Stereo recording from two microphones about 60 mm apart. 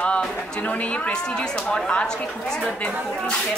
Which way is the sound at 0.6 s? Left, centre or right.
Left.